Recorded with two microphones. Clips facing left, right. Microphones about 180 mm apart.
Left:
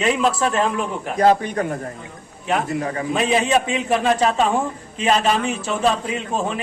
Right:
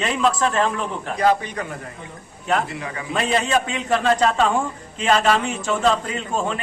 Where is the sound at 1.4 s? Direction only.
45° left (ahead or behind).